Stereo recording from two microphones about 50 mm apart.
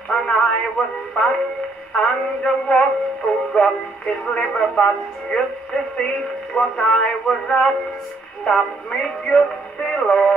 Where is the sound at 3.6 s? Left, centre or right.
Left.